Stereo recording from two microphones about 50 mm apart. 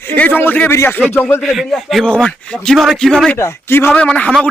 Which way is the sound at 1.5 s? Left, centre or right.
Centre.